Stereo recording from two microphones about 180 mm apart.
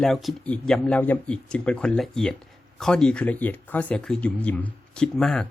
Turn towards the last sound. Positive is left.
turn(degrees=0)  # may be behind; listen again after turning